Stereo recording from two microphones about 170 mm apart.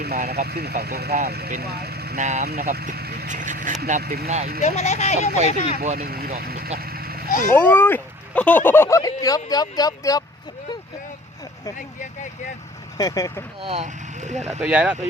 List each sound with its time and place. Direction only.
0.0 s speech: 65° right (ahead or behind)
2.1 s speech: 40° right (ahead or behind)
2.4 s speech: 65° right (ahead or behind)
3.2 s speech: 50° right (ahead or behind)
4.0 s speech: 65° right (ahead or behind)
4.6 s speech: 40° left (ahead or behind)
6.0 s speech: 65° right (ahead or behind)
6.7 s vehicle: 65° right (ahead or behind)
7.5 s speech: 10° left (ahead or behind)
13.0 s speech: 20° left (ahead or behind)
13.6 s speech: 35° right (ahead or behind)
14.6 s speech: 10° right (ahead or behind)